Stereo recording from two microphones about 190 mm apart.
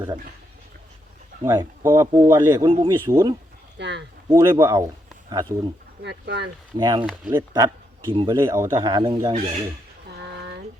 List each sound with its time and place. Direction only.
1.5 s speech: 15° right (ahead or behind)
3.8 s speech: 65° right (ahead or behind)
4.3 s a man's voice: 15° right (ahead or behind)
6.0 s speech: 65° right (ahead or behind)
6.7 s a man's voice: 20° right (ahead or behind)
8.1 s a man's voice: 30° right (ahead or behind)
8.4 s a man's voice: 15° right (ahead or behind)
10.2 s a sound: 65° right (ahead or behind)